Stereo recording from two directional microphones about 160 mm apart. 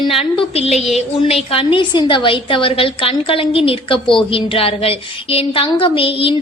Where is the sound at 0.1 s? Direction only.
35° left (ahead or behind).